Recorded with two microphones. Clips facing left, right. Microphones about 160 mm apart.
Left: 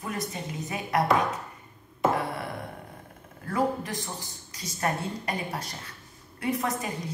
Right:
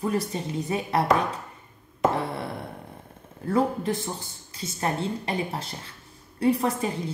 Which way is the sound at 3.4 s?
30° right (ahead or behind).